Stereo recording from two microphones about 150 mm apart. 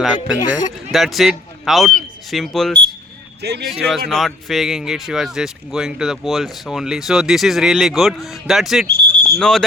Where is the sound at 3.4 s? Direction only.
90° right.